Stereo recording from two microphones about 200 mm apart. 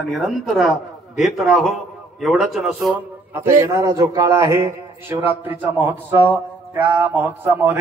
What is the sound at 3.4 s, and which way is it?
A man's voice, 15° right (ahead or behind).